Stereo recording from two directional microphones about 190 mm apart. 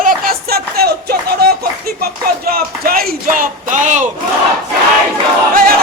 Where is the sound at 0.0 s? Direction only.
50° right (ahead or behind).